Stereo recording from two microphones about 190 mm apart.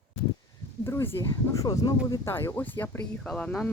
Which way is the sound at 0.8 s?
10° left (ahead or behind).